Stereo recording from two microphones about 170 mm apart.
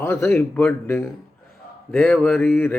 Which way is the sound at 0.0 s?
10° left (ahead or behind).